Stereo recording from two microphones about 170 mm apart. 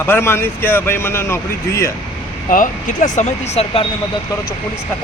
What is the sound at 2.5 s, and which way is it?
Speech, 50° left (ahead or behind).